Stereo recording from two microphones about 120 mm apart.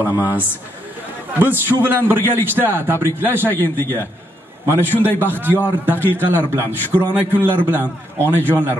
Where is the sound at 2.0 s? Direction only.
20° right (ahead or behind).